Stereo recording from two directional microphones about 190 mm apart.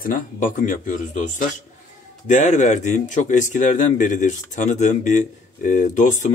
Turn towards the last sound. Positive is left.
turn(degrees=40)  # may be behind; listen again after turning